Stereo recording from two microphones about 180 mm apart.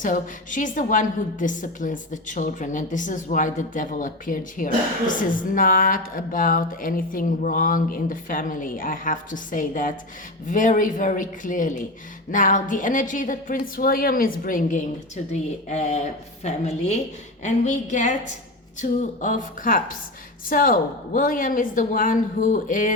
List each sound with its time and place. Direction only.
0.0 s a woman's voice: 45° left (ahead or behind)